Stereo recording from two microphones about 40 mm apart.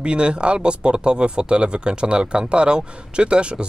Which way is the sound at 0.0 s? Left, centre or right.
Right.